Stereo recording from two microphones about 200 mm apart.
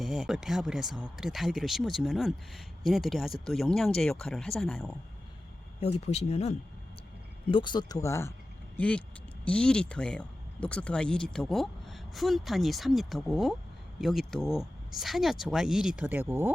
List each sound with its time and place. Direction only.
0.0 s speech: centre (ahead or behind)
5.8 s speech: 30° left (ahead or behind)
7.5 s speech: 25° left (ahead or behind); by 16.5 s 10° right (ahead or behind)